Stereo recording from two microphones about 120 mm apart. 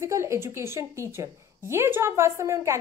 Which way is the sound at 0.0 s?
25° right (ahead or behind).